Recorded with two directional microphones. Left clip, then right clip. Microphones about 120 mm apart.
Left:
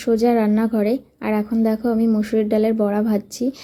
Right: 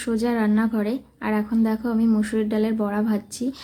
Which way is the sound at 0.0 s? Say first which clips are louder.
Left 7 dB; 25° left (ahead or behind).